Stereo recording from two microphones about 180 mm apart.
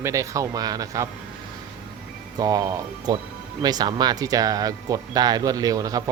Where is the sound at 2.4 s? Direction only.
20° right (ahead or behind).